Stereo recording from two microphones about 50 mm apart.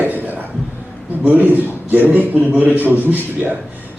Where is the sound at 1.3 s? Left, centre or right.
Right.